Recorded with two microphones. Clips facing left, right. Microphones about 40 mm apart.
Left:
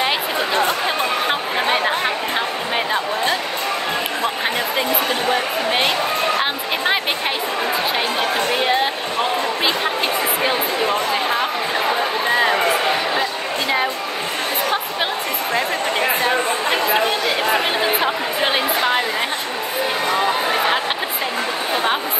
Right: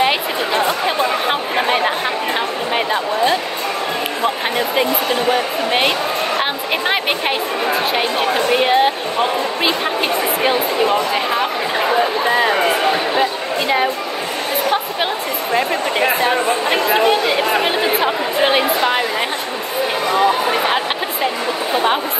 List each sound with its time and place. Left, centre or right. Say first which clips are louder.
0.0 s chatter: right 3 dB; centre
8.5 s speech: right 7 dB; centre
18.0 s speech: right 3 dB; centre